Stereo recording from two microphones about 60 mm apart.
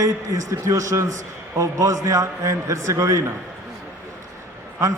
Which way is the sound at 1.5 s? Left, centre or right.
Right.